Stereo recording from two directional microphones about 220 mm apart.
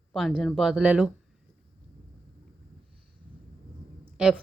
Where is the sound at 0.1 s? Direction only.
Centre (ahead or behind).